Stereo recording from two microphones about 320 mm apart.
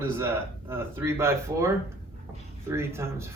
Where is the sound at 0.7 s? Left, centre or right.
Centre.